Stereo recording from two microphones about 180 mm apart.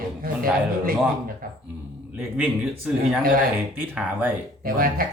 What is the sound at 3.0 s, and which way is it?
Speech, 50° right (ahead or behind).